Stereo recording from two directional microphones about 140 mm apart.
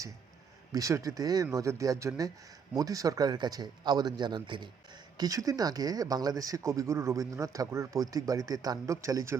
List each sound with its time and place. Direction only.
0.7 s speech: 25° right (ahead or behind)